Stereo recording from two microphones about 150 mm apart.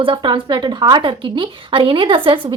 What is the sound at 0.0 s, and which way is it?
A woman's voice, 30° right (ahead or behind).